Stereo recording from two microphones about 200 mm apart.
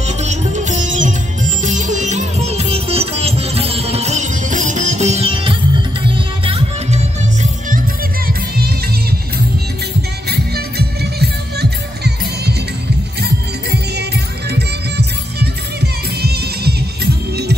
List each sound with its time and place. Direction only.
0.0 s music: 35° right (ahead or behind)
8.3 s music: 50° right (ahead or behind)
10.5 s music: 55° right (ahead or behind)